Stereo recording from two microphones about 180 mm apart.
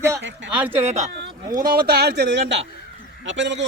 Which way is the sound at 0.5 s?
10° right (ahead or behind).